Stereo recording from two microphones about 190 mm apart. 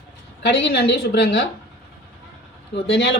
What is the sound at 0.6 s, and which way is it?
Speech, 60° left (ahead or behind).